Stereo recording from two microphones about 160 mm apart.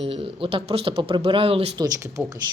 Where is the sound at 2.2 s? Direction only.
5° right (ahead or behind).